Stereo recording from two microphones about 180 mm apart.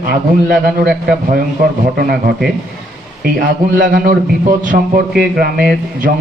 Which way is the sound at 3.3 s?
50° right (ahead or behind).